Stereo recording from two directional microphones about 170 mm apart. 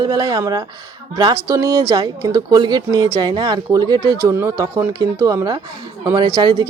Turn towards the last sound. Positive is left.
turn(degrees=-25)  # may be behind; listen again after turning